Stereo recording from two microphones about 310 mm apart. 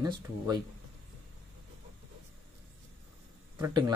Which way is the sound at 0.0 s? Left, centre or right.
Centre.